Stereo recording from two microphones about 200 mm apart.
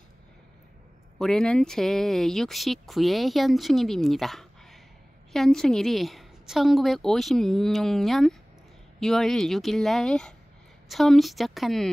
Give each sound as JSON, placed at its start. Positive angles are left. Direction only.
{"t": 1.1, "sound": "speech", "side_deg": 0}